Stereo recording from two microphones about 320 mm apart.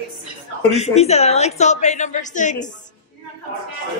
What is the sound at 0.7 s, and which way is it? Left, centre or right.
A woman's voice, centre.